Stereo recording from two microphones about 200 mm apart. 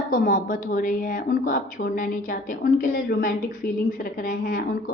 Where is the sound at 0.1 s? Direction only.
40° left (ahead or behind).